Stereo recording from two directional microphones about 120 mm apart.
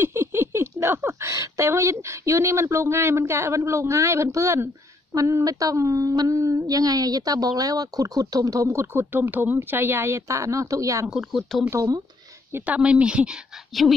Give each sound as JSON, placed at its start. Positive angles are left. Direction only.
{"t": 0.0, "sound": "speech", "side_deg": -20}
{"t": 5.1, "sound": "a sound", "side_deg": -30}
{"t": 11.1, "sound": "a woman's voice", "side_deg": 0}